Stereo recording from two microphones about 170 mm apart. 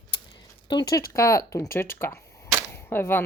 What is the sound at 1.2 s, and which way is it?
Speech, 20° left (ahead or behind).